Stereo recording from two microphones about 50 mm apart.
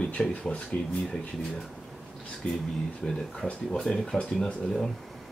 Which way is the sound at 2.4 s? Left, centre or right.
Left.